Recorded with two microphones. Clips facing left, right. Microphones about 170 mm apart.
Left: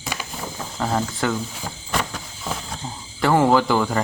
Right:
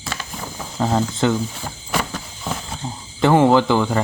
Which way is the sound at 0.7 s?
15° right (ahead or behind).